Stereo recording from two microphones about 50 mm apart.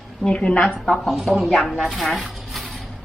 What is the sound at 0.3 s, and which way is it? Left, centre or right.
Speech, centre.